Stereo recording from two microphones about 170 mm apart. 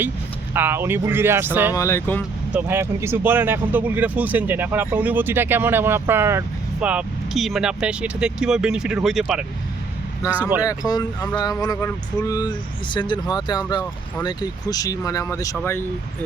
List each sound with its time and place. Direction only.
0.5 s speech: 15° right (ahead or behind)
1.7 s speech: 15° left (ahead or behind)
2.5 s speech: 10° right (ahead or behind)
10.6 s speech: 20° left (ahead or behind)